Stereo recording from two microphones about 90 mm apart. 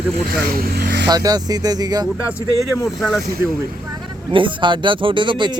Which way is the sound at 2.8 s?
5° right (ahead or behind).